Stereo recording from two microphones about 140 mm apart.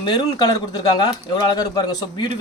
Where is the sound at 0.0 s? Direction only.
30° left (ahead or behind).